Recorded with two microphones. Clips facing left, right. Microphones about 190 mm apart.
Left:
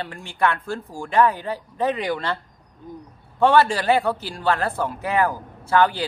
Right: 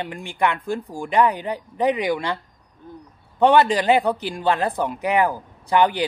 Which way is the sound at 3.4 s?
15° right (ahead or behind).